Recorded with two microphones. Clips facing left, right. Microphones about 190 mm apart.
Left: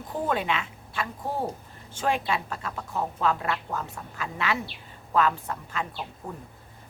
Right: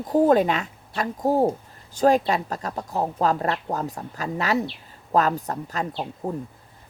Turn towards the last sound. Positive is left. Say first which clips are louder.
# right 8 dB
turn(degrees=-40)  # may be behind; listen again after turning